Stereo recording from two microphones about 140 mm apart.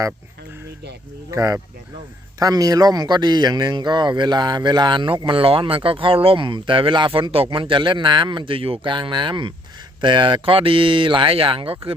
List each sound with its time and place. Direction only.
1.3 s speech: 20° right (ahead or behind); by 11.9 s 40° right (ahead or behind)